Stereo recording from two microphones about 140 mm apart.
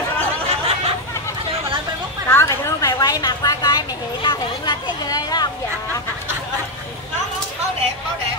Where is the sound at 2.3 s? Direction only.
20° left (ahead or behind).